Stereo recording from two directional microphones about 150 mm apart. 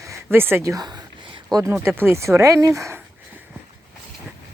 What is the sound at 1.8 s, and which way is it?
Speech, 15° right (ahead or behind).